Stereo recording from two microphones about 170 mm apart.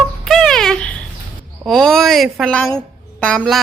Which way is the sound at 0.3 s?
Centre (ahead or behind).